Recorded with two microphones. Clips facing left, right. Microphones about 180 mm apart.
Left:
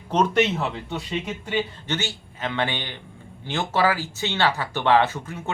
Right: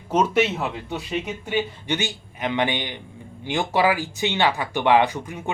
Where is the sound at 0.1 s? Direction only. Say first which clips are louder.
Even; 5° right (ahead or behind).